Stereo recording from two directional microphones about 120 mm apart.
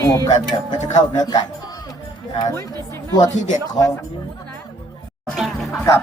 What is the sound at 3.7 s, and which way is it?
Music, 30° left (ahead or behind).